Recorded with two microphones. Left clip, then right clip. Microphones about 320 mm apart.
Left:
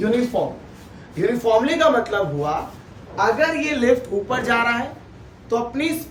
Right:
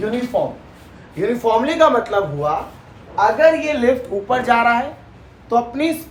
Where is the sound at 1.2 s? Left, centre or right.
Centre.